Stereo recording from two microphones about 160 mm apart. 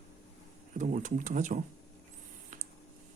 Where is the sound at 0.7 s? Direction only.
50° right (ahead or behind).